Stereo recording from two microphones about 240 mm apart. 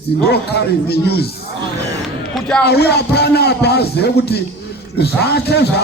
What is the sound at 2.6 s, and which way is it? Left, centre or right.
A man's voice, left.